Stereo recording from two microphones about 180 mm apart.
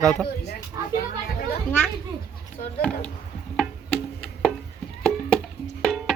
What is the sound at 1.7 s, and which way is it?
Speech, 10° left (ahead or behind).